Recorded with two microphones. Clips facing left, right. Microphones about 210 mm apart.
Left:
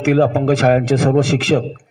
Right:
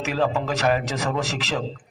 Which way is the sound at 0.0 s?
55° left (ahead or behind).